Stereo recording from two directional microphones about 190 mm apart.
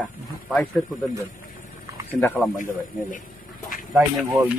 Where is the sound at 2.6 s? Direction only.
45° left (ahead or behind).